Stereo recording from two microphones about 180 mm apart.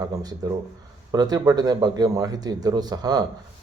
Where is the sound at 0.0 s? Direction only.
20° right (ahead or behind).